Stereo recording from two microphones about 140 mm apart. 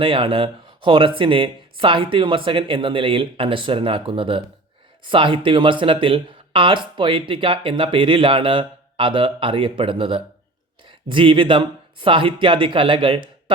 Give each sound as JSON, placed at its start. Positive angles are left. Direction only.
{"t": 0.0, "sound": "speech", "side_deg": -40}